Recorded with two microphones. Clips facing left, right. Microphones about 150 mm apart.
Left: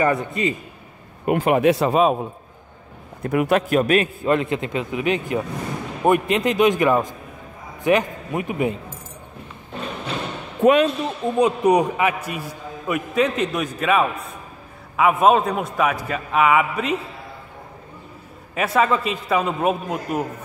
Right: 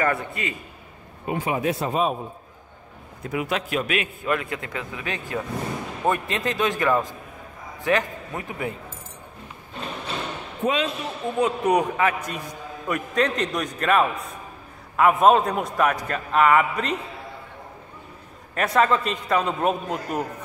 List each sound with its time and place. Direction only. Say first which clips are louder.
0.0 s a man's voice: left 5 dB; 20° left (ahead or behind)
1.2 s speech: left 8 dB; 65° left (ahead or behind); by 2.1 s 90° left
3.2 s a man's voice: left 8 dB; 55° left (ahead or behind); by 8.7 s 20° left (ahead or behind)
10.6 s speech: left 9 dB; 60° left (ahead or behind)
11.3 s a man's voice: left 4 dB; 15° left (ahead or behind)
18.5 s a man's voice: left 1 dB; 5° left (ahead or behind)